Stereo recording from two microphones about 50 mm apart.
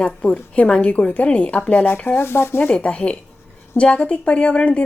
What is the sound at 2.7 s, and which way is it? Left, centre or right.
A woman's voice, left.